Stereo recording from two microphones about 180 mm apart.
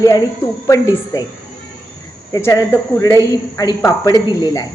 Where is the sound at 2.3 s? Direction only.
15° left (ahead or behind).